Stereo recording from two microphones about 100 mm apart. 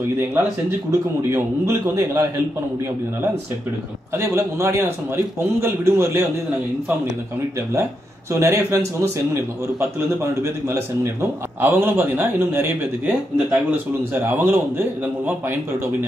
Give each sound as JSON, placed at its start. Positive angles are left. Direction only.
{"t": 1.3, "sound": "a man's voice", "side_deg": -30}
{"t": 4.2, "sound": "a man's voice", "side_deg": -30}
{"t": 8.3, "sound": "a man's voice", "side_deg": -30}